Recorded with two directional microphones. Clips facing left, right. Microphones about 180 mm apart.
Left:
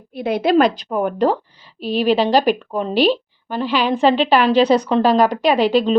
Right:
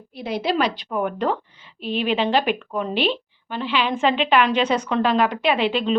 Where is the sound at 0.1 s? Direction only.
55° left (ahead or behind).